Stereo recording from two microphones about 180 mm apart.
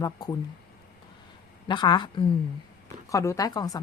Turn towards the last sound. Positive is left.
turn(degrees=20)  # may be behind; listen again after turning